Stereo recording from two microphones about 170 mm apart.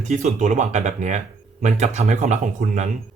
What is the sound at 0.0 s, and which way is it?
Speech, 45° right (ahead or behind).